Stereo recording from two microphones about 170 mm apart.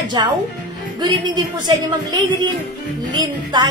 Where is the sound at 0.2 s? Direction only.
25° right (ahead or behind).